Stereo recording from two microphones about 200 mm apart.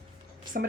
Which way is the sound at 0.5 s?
45° right (ahead or behind).